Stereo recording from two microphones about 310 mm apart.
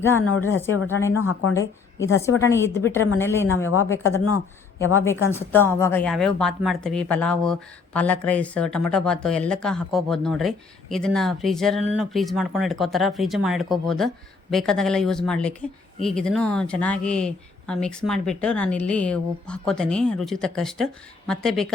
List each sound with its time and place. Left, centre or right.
0.0 s a woman's voice: centre
0.3 s speech: left
0.6 s a woman's voice: centre
1.1 s speech: left
1.5 s a woman's voice: centre
5.3 s speech: centre